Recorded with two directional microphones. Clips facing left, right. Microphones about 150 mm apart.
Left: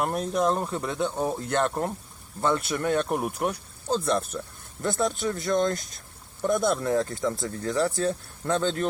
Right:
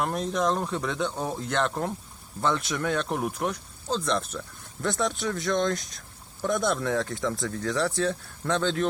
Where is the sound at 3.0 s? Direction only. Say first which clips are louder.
Left 1 dB; 5° left (ahead or behind).